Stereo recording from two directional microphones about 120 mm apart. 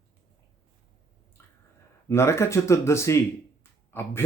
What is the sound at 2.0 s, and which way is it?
Speech, 25° left (ahead or behind).